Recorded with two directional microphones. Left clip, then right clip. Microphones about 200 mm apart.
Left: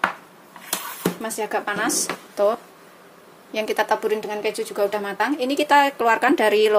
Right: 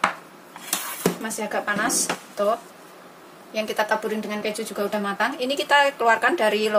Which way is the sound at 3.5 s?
40° left (ahead or behind).